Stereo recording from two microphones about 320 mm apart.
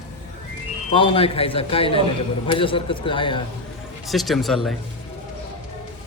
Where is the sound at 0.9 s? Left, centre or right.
Centre.